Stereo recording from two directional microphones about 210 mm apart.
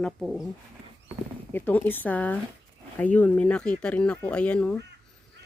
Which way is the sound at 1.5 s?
10° left (ahead or behind).